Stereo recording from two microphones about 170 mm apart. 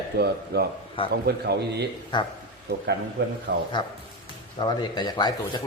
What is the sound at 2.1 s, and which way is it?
Speech, 25° left (ahead or behind).